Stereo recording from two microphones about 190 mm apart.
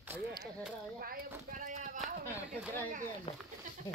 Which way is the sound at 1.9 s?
5° right (ahead or behind).